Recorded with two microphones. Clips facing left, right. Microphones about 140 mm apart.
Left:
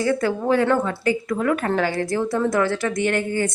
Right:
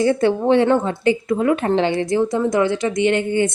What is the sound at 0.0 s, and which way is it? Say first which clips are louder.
Speech: right 5 dB; 25° right (ahead or behind).